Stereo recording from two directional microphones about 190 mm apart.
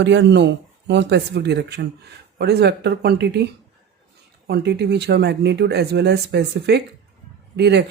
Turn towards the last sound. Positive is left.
turn(degrees=-60)  # may be behind; listen again after turning